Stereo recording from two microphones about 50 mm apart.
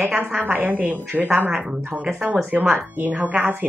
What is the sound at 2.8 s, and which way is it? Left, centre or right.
Speech, right.